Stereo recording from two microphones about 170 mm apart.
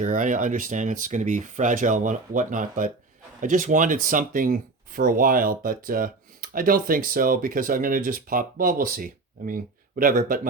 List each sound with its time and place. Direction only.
0.0 s speech: 50° right (ahead or behind)